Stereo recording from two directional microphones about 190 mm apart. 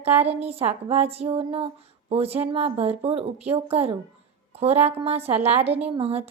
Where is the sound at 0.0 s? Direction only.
10° right (ahead or behind).